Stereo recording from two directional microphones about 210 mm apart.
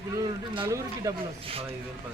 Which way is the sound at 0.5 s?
20° right (ahead or behind).